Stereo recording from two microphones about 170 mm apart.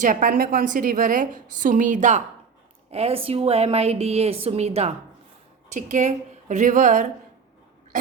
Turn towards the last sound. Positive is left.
turn(degrees=-50)  # may be behind; listen again after turning